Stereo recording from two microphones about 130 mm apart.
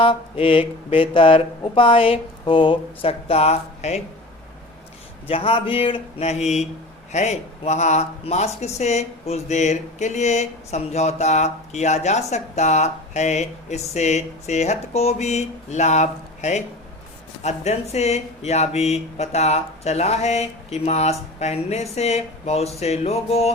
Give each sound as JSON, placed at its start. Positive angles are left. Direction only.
{"t": 0.0, "sound": "speech", "side_deg": 45}
{"t": 5.3, "sound": "speech", "side_deg": 45}